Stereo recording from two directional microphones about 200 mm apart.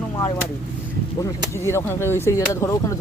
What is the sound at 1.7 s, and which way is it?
Speech, 10° left (ahead or behind).